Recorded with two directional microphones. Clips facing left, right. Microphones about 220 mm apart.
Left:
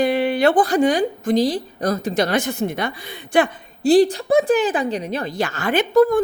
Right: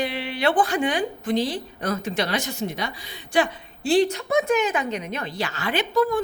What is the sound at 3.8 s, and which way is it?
Speech, 35° left (ahead or behind).